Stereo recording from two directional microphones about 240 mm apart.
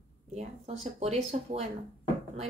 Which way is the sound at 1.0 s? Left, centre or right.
Right.